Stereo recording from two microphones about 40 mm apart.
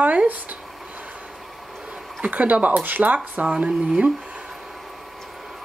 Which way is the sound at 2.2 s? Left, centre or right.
Right.